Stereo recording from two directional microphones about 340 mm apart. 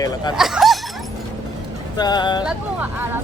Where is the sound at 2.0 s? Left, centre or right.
Centre.